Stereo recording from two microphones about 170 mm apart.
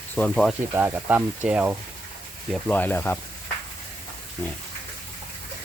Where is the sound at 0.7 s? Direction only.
10° right (ahead or behind).